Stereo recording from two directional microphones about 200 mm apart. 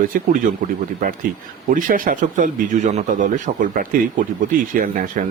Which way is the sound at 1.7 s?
40° right (ahead or behind).